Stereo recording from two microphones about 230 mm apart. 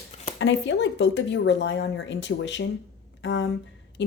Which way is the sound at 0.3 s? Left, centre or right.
Left.